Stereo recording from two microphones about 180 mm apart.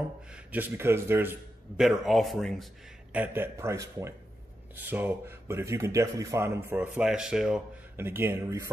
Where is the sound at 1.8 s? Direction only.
Centre (ahead or behind).